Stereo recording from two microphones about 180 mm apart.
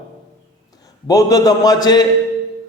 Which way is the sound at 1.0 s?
20° left (ahead or behind).